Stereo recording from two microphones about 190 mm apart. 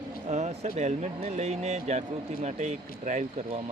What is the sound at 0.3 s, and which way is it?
Speech, 35° right (ahead or behind).